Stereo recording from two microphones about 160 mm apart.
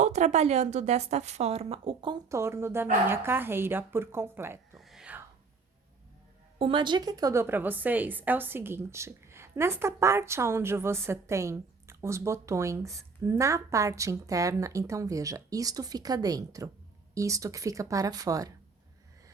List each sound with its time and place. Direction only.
0.0 s a woman's voice: 45° right (ahead or behind)
2.3 s a woman's voice: 15° right (ahead or behind)
4.8 s whispering: centre (ahead or behind)
6.6 s a woman's voice: 30° right (ahead or behind)